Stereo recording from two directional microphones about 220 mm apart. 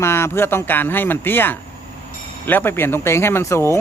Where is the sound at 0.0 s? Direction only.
10° left (ahead or behind).